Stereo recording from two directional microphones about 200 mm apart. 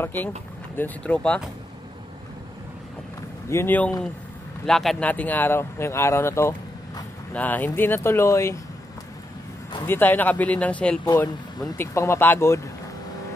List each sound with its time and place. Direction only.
0.0 s speech: 10° left (ahead or behind)
3.4 s speech: 10° left (ahead or behind)
9.8 s speech: 10° left (ahead or behind)
11.1 s speech: 20° left (ahead or behind)